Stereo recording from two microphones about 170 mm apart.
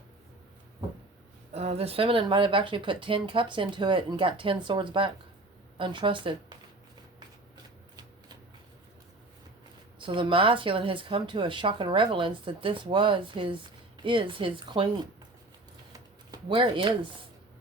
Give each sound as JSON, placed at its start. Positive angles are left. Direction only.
{"t": 1.5, "sound": "speech", "side_deg": -35}
{"t": 10.0, "sound": "speech", "side_deg": -30}
{"t": 15.9, "sound": "a sound", "side_deg": -25}